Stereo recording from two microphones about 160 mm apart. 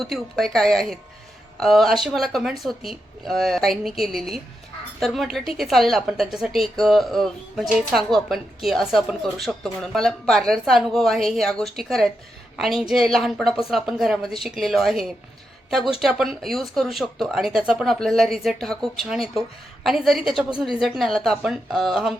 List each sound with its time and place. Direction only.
0.0 s a woman's voice: centre (ahead or behind)